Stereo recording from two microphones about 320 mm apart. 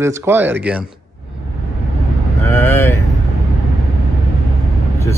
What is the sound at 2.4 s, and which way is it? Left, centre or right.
Vehicle, centre.